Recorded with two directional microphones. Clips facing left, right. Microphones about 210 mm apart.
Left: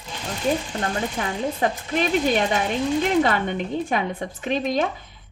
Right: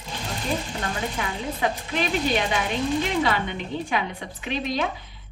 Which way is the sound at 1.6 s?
45° left (ahead or behind).